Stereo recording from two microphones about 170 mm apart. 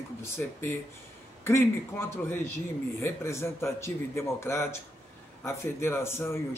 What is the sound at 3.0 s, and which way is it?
Speech, 15° left (ahead or behind).